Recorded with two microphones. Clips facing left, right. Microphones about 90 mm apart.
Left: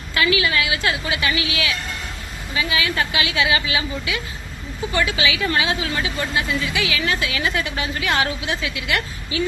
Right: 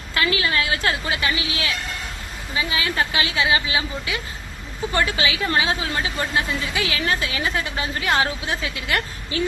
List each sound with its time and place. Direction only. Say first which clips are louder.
0.2 s a woman's voice: left 2 dB; 40° right (ahead or behind)